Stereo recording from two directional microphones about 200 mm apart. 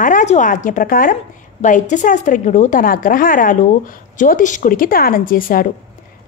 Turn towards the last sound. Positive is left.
turn(degrees=45)  # may be behind; listen again after turning